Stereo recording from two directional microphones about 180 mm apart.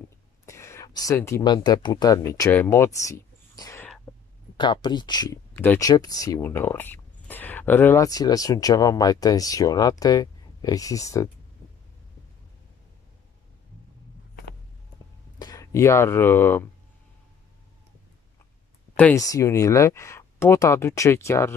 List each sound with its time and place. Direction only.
0.5 s speech: 15° left (ahead or behind)
4.1 s a sound: 5° left (ahead or behind)
4.6 s speech: 25° left (ahead or behind)
15.3 s speech: 20° left (ahead or behind)
19.1 s speech: 20° left (ahead or behind)